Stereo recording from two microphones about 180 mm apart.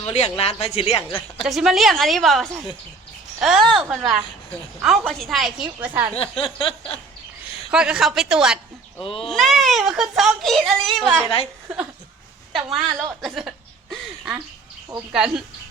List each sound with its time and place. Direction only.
0.0 s speech: 35° left (ahead or behind)
1.4 s speech: centre (ahead or behind)
6.1 s speech: 30° left (ahead or behind)
7.7 s speech: 5° right (ahead or behind)
9.0 s speech: 30° left (ahead or behind)
9.2 s speech: centre (ahead or behind)
12.7 s speech: centre (ahead or behind)
13.9 s a sound: centre (ahead or behind)